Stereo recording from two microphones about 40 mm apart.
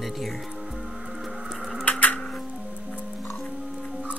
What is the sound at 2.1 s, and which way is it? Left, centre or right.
Music, centre.